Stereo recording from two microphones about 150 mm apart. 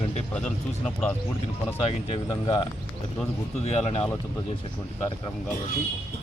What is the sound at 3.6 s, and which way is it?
Speech, 45° left (ahead or behind).